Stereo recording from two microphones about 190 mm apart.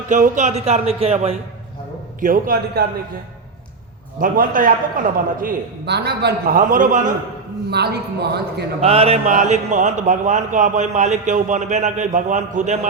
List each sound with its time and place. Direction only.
0.1 s speech: 40° right (ahead or behind)
2.2 s a man's voice: 50° right (ahead or behind)
4.2 s a man's voice: 45° right (ahead or behind)
6.6 s a man's voice: 45° right (ahead or behind)
7.7 s a man's voice: 60° right (ahead or behind)
8.8 s speech: 30° right (ahead or behind)